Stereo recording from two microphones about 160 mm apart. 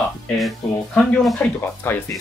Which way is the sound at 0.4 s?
Centre (ahead or behind).